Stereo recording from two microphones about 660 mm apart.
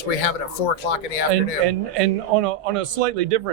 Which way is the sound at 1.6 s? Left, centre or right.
Right.